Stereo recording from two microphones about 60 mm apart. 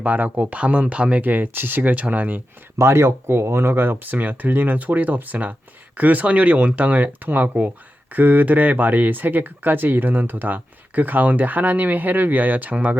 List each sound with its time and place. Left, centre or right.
0.0 s speech: right
2.7 s speech: right